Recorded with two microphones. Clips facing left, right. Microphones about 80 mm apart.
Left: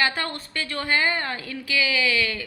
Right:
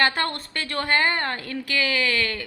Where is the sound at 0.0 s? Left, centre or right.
Right.